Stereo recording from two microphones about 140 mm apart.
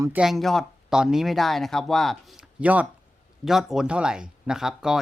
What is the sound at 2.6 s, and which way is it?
Speech, 10° right (ahead or behind).